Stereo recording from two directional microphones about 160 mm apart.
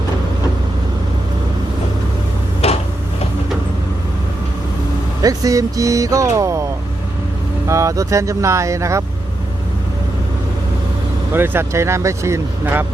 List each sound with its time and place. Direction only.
2.6 s tick-tock: 40° left (ahead or behind)
5.2 s speech: 20° right (ahead or behind)
7.7 s speech: 20° right (ahead or behind)
11.3 s speech: 15° right (ahead or behind)